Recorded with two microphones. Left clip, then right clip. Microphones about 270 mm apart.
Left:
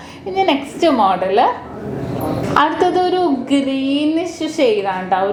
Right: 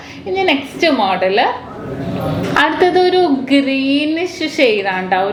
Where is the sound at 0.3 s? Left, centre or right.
Left.